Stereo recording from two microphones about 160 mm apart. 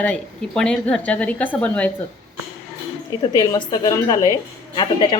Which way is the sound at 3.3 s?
25° left (ahead or behind).